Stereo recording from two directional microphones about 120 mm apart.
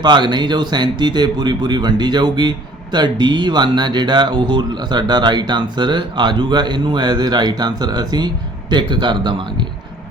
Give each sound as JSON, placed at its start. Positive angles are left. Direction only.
{"t": 0.0, "sound": "speech", "side_deg": -40}